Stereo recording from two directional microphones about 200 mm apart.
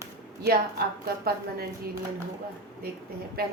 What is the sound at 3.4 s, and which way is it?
Speech, 50° right (ahead or behind).